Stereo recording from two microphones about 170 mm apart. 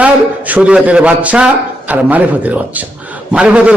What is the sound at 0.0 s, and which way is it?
A man's voice, 10° right (ahead or behind).